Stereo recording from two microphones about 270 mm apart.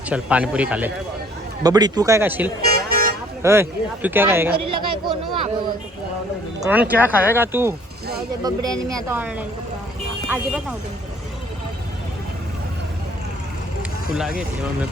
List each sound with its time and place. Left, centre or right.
0.1 s a man's voice: centre
2.6 s vehicle: right
3.4 s a man's voice: centre
4.5 s speech: right
6.6 s a man's voice: centre
14.1 s speech: centre